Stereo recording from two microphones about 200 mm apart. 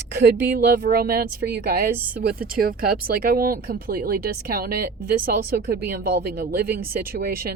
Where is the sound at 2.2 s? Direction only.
50° right (ahead or behind).